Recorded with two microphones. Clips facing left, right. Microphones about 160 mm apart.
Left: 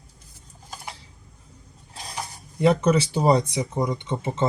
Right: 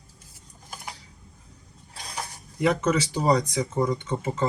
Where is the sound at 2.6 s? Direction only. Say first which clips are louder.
Left 4 dB; 30° left (ahead or behind).